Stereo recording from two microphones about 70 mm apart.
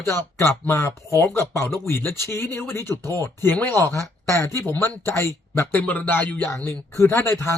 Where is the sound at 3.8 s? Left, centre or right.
Left.